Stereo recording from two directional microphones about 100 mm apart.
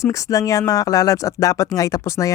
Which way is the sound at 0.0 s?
35° left (ahead or behind).